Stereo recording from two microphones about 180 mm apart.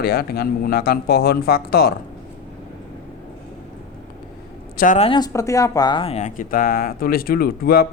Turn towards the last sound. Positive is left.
turn(degrees=55)  # may be behind; listen again after turning